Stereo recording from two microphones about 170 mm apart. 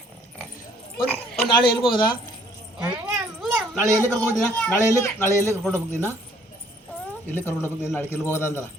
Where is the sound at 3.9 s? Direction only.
10° left (ahead or behind).